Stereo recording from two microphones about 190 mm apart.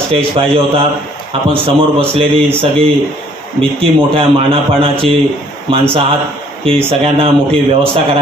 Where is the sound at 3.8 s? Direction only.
30° right (ahead or behind).